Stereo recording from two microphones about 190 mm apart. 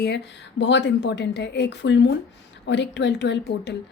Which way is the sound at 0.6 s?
70° left (ahead or behind).